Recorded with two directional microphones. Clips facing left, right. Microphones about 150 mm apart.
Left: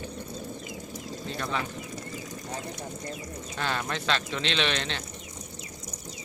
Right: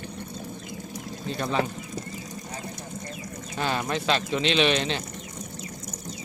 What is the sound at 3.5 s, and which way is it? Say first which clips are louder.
Speech: right 4 dB; 15° right (ahead or behind).